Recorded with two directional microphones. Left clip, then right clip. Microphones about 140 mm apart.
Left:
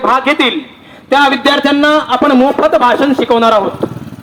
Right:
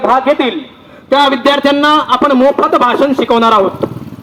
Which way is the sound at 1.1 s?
40° left (ahead or behind).